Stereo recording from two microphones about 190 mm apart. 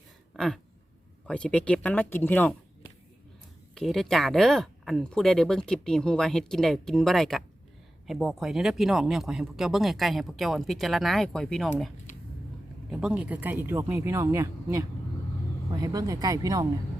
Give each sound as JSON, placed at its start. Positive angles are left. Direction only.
{"t": 0.3, "sound": "a sound", "side_deg": 0}
{"t": 1.3, "sound": "speech", "side_deg": 5}
{"t": 3.8, "sound": "speech", "side_deg": 0}
{"t": 12.9, "sound": "speech", "side_deg": -5}